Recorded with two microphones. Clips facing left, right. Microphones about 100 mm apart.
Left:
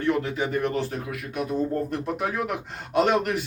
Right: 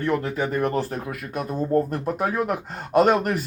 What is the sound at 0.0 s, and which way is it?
Speech, 45° right (ahead or behind).